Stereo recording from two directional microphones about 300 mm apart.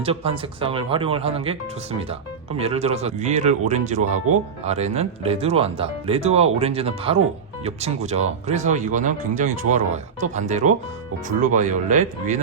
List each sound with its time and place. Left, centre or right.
0.0 s speech: centre